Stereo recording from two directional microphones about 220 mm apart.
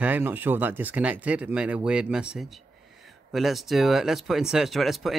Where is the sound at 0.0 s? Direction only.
5° right (ahead or behind).